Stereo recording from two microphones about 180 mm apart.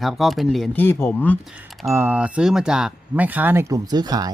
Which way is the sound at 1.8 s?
15° right (ahead or behind).